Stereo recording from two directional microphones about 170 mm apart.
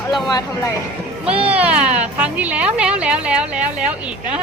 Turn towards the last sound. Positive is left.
turn(degrees=-5)  # may be behind; listen again after turning